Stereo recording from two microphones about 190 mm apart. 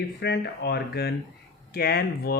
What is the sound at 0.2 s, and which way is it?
Speech, 60° left (ahead or behind).